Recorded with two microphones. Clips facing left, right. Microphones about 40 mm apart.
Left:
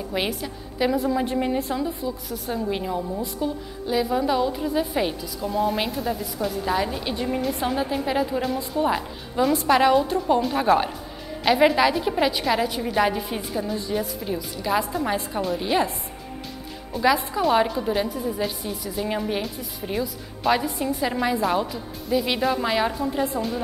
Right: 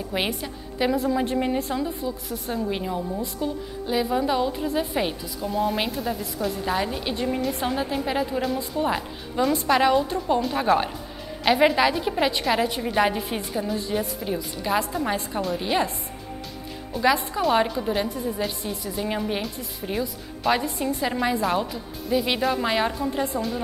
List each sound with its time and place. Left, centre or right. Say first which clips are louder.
0.1 s a woman's voice: even; centre
0.9 s a woman's voice: even; centre
16.9 s a woman's voice: left 1 dB; centre